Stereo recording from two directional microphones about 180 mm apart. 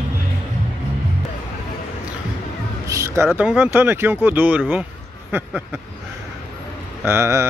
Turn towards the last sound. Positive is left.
turn(degrees=-15)  # may be behind; listen again after turning